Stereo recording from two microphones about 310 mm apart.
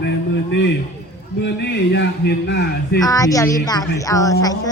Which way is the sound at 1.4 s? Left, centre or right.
Left.